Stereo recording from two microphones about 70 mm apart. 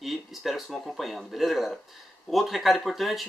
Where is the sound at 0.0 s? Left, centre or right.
Centre.